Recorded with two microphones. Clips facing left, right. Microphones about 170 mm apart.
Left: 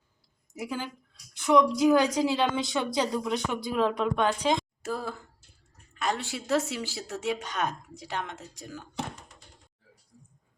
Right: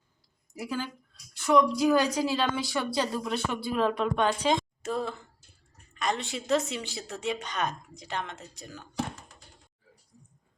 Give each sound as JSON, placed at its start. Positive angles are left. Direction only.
{"t": 0.8, "sound": "speech", "side_deg": 20}